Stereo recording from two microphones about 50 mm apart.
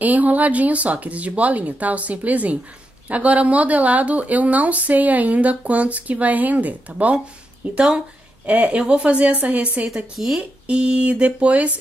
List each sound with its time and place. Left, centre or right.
0.0 s speech: right
10.1 s speech: centre
10.7 s speech: right